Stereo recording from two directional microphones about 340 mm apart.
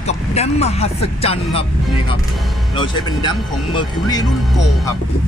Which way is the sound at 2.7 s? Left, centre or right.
Centre.